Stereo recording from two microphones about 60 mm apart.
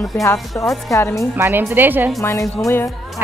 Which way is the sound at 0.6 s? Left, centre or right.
Left.